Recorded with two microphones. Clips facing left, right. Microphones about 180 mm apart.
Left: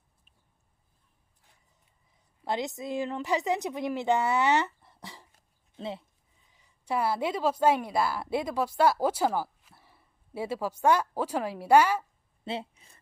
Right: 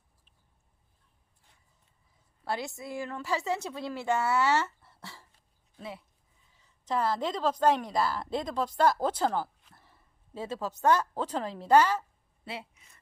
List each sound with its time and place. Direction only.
2.4 s a woman's voice: 20° left (ahead or behind)
6.5 s a woman's voice: 15° left (ahead or behind)
12.5 s speech: 30° left (ahead or behind)